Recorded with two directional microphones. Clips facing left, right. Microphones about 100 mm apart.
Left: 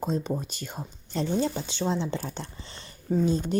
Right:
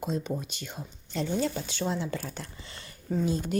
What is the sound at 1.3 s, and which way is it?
A woman's voice, 25° left (ahead or behind).